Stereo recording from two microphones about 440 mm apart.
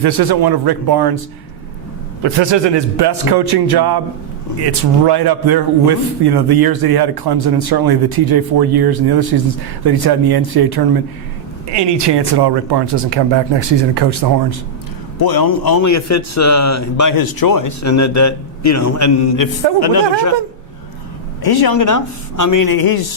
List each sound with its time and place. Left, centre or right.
0.0 s a man's voice: right
2.2 s a man's voice: right
15.2 s a man's voice: left
19.5 s a woman's voice: left
21.4 s speech: left